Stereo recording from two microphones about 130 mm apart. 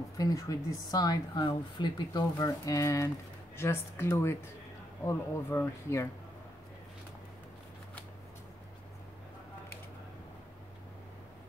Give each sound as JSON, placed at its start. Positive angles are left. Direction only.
{"t": 0.2, "sound": "a woman's voice", "side_deg": 25}